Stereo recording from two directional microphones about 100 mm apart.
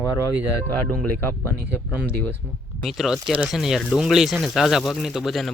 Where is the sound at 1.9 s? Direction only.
10° right (ahead or behind).